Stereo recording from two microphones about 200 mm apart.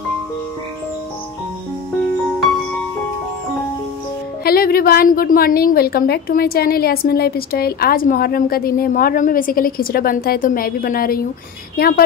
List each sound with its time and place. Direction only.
4.5 s a woman's voice: 50° left (ahead or behind)